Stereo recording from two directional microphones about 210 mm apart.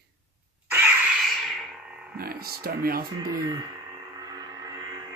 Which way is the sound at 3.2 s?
20° right (ahead or behind).